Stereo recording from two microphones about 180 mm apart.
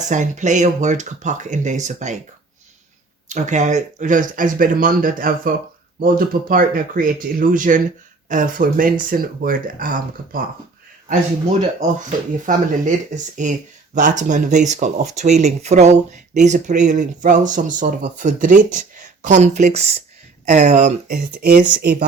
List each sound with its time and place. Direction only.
0.0 s speech: 40° right (ahead or behind)
3.2 s speech: 40° right (ahead or behind)
11.8 s speech: 45° right (ahead or behind)